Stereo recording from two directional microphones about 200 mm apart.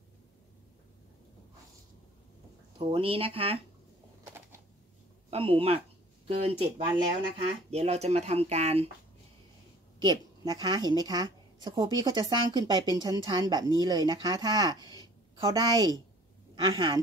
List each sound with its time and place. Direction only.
2.8 s a woman's voice: 25° right (ahead or behind)
4.2 s a sound: 15° right (ahead or behind)
5.3 s a woman's voice: 30° right (ahead or behind)
9.9 s a woman's voice: 20° right (ahead or behind)
15.0 s a sound: 20° right (ahead or behind)
16.5 s a woman's voice: 25° right (ahead or behind)